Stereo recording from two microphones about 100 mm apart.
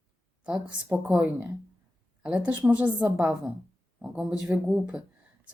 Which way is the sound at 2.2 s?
10° right (ahead or behind).